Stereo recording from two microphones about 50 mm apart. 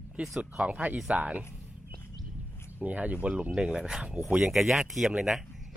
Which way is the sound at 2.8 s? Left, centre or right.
Right.